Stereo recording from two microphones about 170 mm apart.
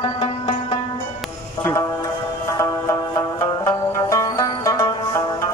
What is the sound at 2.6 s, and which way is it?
Music, 20° left (ahead or behind).